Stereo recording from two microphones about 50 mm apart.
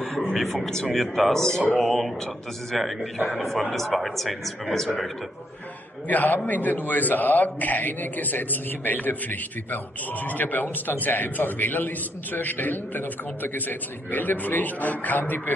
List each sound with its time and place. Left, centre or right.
0.0 s a sound: centre
0.5 s a man's voice: centre
6.0 s a man's voice: left